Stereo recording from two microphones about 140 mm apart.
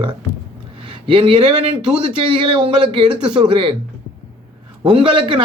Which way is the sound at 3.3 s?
35° right (ahead or behind).